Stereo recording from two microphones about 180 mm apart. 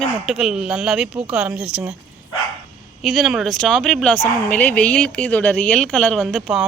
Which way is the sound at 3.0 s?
Centre (ahead or behind).